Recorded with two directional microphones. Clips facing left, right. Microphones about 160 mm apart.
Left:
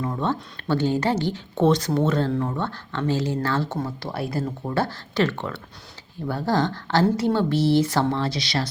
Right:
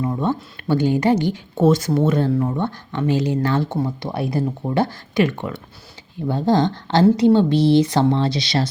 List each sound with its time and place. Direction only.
0.0 s a woman's voice: 10° right (ahead or behind)